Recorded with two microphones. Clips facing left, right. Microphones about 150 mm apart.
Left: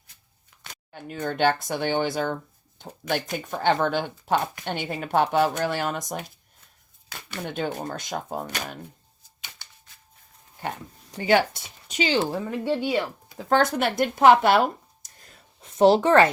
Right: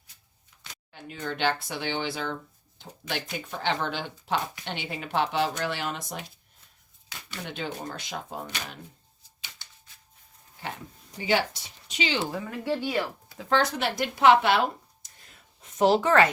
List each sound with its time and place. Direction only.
0.6 s speech: 50° left (ahead or behind)
11.3 s speech: 55° left (ahead or behind)
12.3 s speech: 20° left (ahead or behind)
13.5 s speech: 50° left (ahead or behind)
15.8 s a woman's voice: 30° left (ahead or behind)